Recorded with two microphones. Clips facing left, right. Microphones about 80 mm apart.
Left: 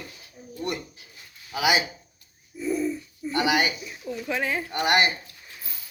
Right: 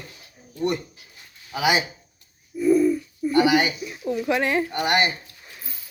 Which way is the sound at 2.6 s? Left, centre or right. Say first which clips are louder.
Right 9 dB; centre.